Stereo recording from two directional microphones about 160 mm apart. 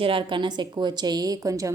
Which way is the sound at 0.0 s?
35° right (ahead or behind).